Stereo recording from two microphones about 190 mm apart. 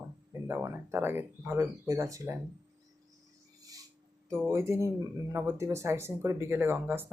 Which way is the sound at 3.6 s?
20° right (ahead or behind).